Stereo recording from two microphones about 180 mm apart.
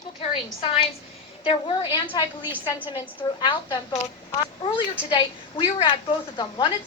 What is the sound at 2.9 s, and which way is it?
A woman's voice, 25° left (ahead or behind).